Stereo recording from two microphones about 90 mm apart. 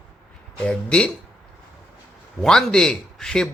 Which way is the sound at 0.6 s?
10° left (ahead or behind).